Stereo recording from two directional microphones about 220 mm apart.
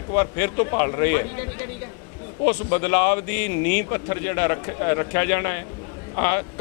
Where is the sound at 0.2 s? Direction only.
15° left (ahead or behind).